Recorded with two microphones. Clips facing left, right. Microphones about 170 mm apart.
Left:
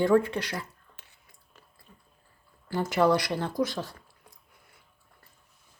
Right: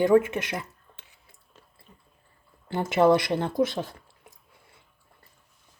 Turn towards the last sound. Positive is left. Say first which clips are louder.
# right 2 dB
turn(degrees=-25)  # may be behind; listen again after turning